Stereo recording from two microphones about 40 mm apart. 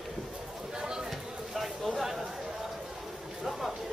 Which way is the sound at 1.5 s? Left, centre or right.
Centre.